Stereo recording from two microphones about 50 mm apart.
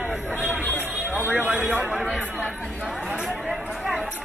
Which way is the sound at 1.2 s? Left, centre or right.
Right.